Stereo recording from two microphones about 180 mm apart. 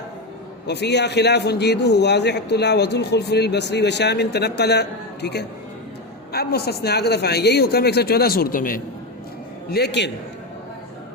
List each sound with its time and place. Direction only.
0.7 s a man's voice: 70° left (ahead or behind); by 8.8 s 50° left (ahead or behind)
9.6 s a man's voice: 65° left (ahead or behind)